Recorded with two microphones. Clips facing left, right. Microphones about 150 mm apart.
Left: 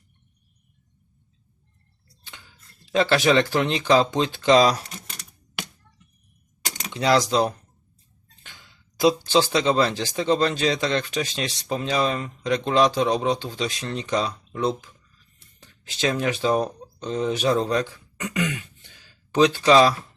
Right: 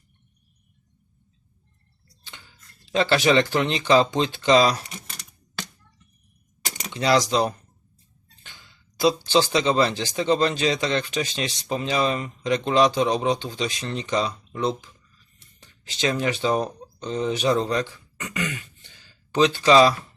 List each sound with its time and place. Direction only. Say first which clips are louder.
2.9 s speech: even; centre (ahead or behind)
6.9 s speech: left 1 dB; centre (ahead or behind)
9.0 s speech: left 1 dB; 5° left (ahead or behind)
15.9 s speech: even; 5° left (ahead or behind)